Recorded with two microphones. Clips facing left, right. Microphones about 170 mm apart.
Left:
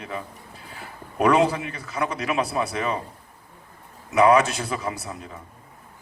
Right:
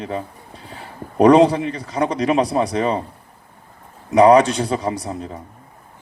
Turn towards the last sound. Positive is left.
turn(degrees=-35)  # may be behind; listen again after turning